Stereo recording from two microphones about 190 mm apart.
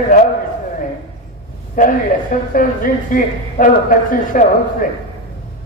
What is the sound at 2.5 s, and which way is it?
Speech, 45° left (ahead or behind).